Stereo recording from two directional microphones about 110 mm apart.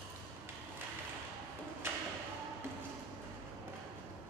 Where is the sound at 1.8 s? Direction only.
20° right (ahead or behind).